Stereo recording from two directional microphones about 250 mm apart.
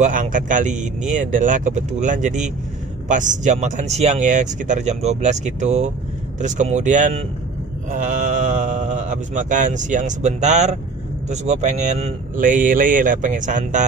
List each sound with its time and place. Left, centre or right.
0.0 s speech: right